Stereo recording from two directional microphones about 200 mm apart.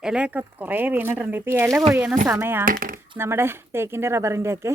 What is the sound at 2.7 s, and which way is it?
Speech, 45° right (ahead or behind).